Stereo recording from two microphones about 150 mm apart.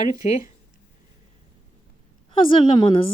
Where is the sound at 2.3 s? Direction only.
35° left (ahead or behind).